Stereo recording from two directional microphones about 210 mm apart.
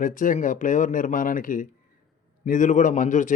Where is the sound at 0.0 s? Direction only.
40° left (ahead or behind).